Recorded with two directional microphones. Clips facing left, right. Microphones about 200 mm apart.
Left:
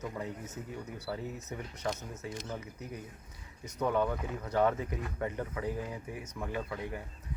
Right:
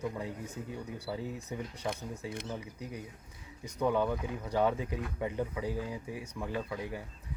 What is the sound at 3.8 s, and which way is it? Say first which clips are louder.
Speech: right 1 dB; 10° right (ahead or behind).